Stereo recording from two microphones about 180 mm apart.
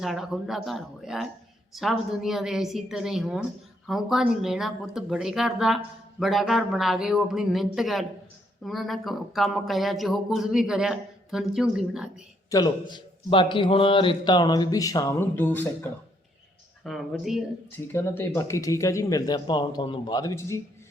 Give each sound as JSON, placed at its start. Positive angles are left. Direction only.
{"t": 0.0, "sound": "speech", "side_deg": 0}
{"t": 12.5, "sound": "a man's voice", "side_deg": 20}
{"t": 16.8, "sound": "speech", "side_deg": 0}
{"t": 17.9, "sound": "speech", "side_deg": 15}